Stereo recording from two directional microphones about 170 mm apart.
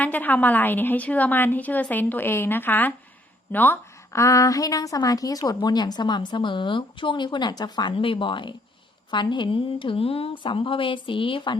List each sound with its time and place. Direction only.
0.0 s a woman's voice: 10° left (ahead or behind); by 11.5 s 30° left (ahead or behind)